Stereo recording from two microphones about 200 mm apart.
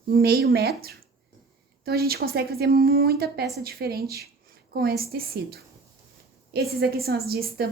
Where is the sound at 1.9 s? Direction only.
50° right (ahead or behind).